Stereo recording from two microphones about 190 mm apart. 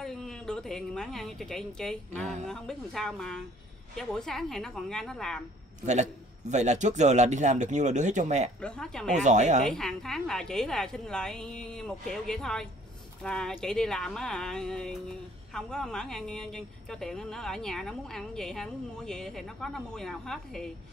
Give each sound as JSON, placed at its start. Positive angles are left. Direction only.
{"t": 0.0, "sound": "a woman's voice", "side_deg": 0}
{"t": 6.5, "sound": "speech", "side_deg": -40}
{"t": 8.5, "sound": "a woman's voice", "side_deg": 5}
{"t": 9.1, "sound": "speech", "side_deg": -40}
{"t": 9.7, "sound": "a woman's voice", "side_deg": 5}